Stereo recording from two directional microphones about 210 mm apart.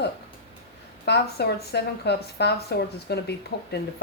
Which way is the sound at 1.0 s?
50° left (ahead or behind).